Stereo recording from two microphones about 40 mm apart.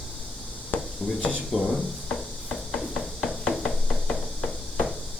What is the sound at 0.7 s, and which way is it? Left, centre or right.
Dishes, left.